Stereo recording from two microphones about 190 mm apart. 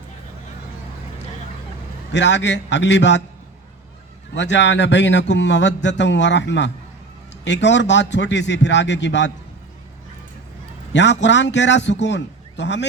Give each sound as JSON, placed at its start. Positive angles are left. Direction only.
{"t": 2.1, "sound": "a man's voice", "side_deg": 70}
{"t": 4.4, "sound": "a man's voice", "side_deg": 70}
{"t": 10.9, "sound": "a man's voice", "side_deg": 70}